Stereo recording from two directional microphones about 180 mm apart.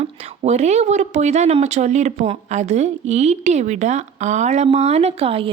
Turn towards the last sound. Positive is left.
turn(degrees=-30)  # may be behind; listen again after turning